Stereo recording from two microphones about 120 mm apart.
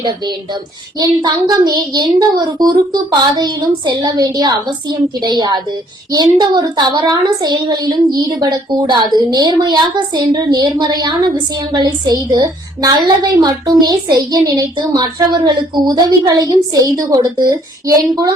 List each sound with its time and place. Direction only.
0.0 s a woman's voice: 40° right (ahead or behind)